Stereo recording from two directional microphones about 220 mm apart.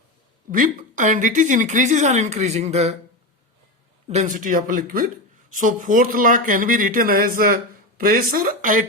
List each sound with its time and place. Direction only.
0.5 s speech: 40° right (ahead or behind)
4.1 s speech: 35° right (ahead or behind)